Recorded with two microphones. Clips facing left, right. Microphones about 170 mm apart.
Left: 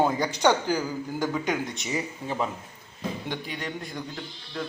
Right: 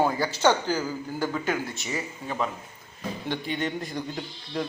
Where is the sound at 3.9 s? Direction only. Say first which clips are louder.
Right 3 dB; 20° right (ahead or behind).